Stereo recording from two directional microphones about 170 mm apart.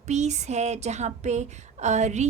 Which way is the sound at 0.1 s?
40° right (ahead or behind).